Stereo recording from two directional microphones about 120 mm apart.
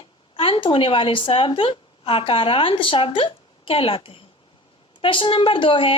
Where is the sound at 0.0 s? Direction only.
50° left (ahead or behind).